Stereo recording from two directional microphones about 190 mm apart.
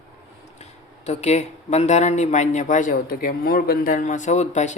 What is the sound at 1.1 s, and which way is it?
Speech, 35° left (ahead or behind).